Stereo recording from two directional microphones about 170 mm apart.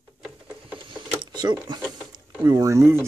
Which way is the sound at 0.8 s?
30° right (ahead or behind).